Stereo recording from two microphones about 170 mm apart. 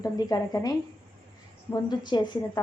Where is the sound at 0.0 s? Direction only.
20° left (ahead or behind).